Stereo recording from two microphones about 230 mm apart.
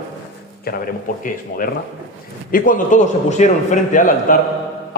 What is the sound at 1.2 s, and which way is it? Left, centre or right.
A man's voice, left.